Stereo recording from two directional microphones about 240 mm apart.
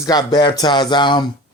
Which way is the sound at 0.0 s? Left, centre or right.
Centre.